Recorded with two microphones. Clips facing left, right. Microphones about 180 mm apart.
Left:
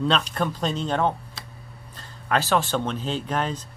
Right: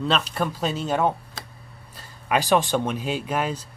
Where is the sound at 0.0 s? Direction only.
5° right (ahead or behind).